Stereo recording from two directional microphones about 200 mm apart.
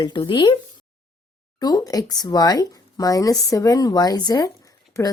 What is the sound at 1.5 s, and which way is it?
A woman's voice, 20° left (ahead or behind).